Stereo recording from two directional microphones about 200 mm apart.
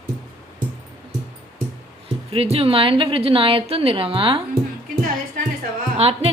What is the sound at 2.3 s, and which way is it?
A woman's voice, 30° right (ahead or behind).